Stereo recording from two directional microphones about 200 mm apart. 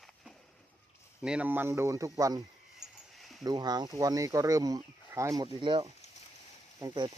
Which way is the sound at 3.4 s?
20° right (ahead or behind).